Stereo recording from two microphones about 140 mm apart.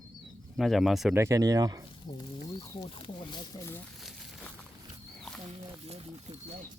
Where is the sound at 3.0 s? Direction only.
35° left (ahead or behind).